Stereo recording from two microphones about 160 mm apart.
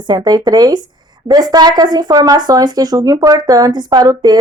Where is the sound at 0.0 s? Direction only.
25° right (ahead or behind).